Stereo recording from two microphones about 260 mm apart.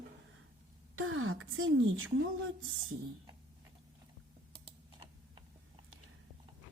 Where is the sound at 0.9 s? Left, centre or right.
Right.